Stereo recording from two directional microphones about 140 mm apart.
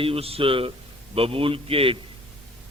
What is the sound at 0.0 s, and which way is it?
A man's voice, 45° right (ahead or behind).